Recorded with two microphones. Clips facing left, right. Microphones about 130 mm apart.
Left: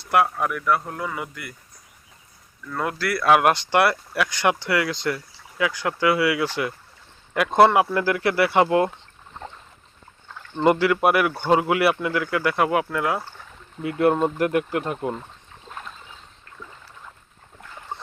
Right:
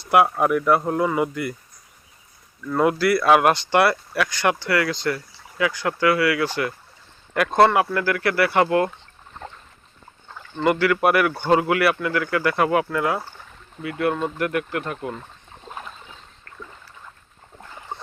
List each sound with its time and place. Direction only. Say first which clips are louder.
0.3 s speech: right 5 dB; 25° right (ahead or behind)
2.8 s speech: right 4 dB; 5° right (ahead or behind)
4.4 s speech: even; 15° left (ahead or behind)
10.6 s speech: left 1 dB; 25° left (ahead or behind)
10.9 s speech: right 1 dB; 10° left (ahead or behind)
11.7 s speech: even; 15° left (ahead or behind)
14.0 s speech: left 4 dB; 35° left (ahead or behind)